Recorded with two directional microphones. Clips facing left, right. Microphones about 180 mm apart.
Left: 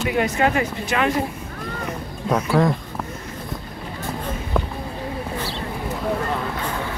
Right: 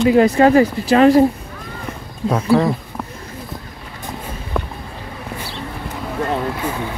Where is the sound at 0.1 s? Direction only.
35° right (ahead or behind).